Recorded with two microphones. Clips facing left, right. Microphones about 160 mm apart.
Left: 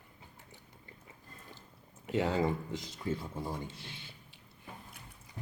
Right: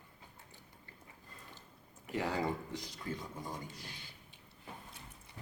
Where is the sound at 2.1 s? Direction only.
25° left (ahead or behind).